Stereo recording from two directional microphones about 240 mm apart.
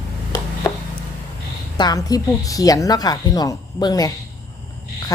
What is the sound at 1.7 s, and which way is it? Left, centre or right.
A woman's voice, centre.